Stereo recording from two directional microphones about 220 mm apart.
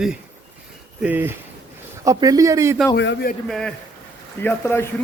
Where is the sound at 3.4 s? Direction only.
Centre (ahead or behind).